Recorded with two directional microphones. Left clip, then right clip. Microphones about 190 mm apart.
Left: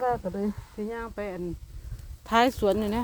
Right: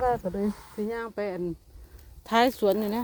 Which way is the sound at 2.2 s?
15° right (ahead or behind).